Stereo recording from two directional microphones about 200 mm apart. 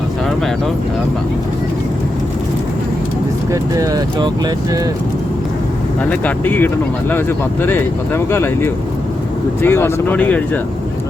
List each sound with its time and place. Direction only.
3.5 s speech: 20° right (ahead or behind)
6.1 s speech: 10° left (ahead or behind)